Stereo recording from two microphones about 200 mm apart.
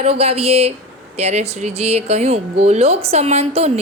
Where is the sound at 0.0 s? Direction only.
30° right (ahead or behind).